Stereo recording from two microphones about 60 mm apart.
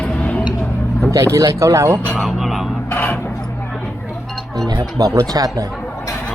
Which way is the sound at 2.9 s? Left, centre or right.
Left.